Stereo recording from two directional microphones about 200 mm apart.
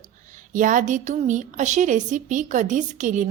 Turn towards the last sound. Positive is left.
turn(degrees=-40)  # may be behind; listen again after turning